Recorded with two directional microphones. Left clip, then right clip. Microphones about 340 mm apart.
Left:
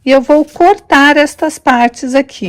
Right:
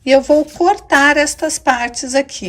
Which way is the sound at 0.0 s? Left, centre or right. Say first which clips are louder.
Left 3 dB; centre.